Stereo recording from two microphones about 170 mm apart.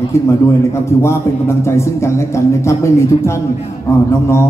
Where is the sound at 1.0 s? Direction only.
15° left (ahead or behind).